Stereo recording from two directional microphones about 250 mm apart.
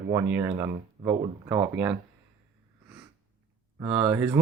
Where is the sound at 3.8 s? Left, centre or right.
Centre.